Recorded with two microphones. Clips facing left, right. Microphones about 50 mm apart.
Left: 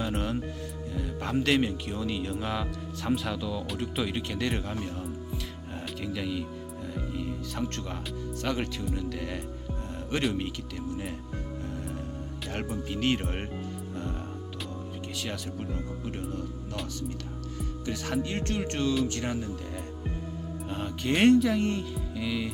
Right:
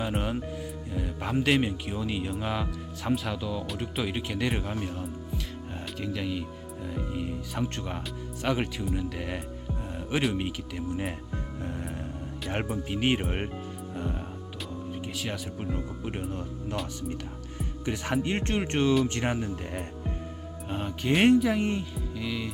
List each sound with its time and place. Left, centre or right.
0.0 s music: centre
0.9 s speech: centre
12.7 s speech: centre
13.9 s music: centre
15.5 s speech: centre
17.6 s speech: right
20.7 s speech: centre